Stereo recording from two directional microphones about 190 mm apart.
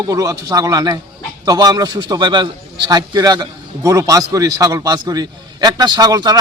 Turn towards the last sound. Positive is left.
turn(degrees=-20)  # may be behind; listen again after turning